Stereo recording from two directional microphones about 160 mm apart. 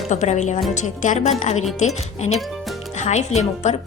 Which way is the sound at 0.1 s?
45° left (ahead or behind).